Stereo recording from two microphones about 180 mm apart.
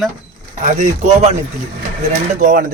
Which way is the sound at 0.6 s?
40° right (ahead or behind).